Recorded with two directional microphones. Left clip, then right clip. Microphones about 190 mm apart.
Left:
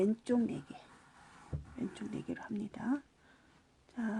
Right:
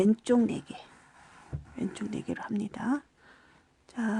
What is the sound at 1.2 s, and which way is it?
Heart sounds, 10° right (ahead or behind).